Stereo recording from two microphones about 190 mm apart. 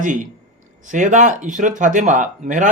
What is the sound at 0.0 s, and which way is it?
A man's voice, 40° right (ahead or behind).